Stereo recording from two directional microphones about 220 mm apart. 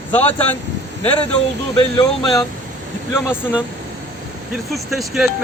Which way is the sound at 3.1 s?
10° left (ahead or behind).